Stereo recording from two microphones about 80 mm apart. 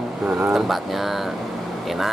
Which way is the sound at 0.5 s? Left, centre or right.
Centre.